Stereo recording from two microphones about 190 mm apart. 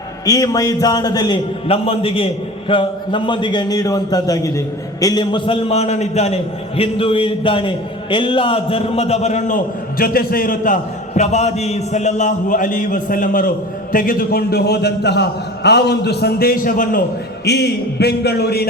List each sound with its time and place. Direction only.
0.3 s a man's voice: 20° left (ahead or behind); by 9.6 s 35° left (ahead or behind)
10.0 s a man's voice: 50° left (ahead or behind)
17.4 s a man's voice: 60° left (ahead or behind)